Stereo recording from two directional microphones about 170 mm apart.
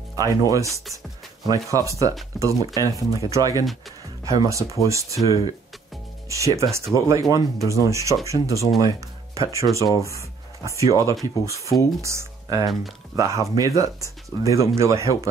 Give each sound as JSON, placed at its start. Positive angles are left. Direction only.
{"t": 0.1, "sound": "speech", "side_deg": -20}